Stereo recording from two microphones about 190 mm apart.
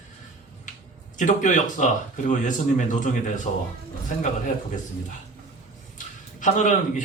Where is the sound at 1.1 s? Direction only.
40° left (ahead or behind).